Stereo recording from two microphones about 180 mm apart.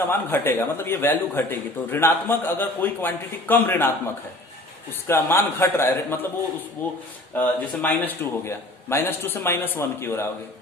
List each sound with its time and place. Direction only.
0.1 s a man's voice: 10° left (ahead or behind)